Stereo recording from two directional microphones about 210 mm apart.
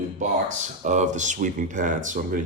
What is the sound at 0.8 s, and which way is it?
Speech, 35° right (ahead or behind).